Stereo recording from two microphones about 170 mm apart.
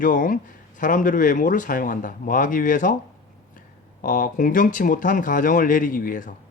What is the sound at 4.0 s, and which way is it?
Speech, 55° left (ahead or behind).